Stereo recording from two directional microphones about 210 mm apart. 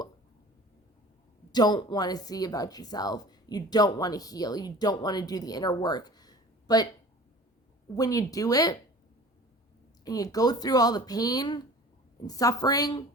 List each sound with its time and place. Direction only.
1.5 s speech: 20° left (ahead or behind)
7.9 s speech: 15° left (ahead or behind)
10.0 s speech: 15° left (ahead or behind)